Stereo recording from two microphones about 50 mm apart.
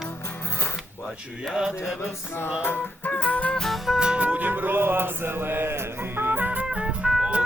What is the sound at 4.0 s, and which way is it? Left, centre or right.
Music, right.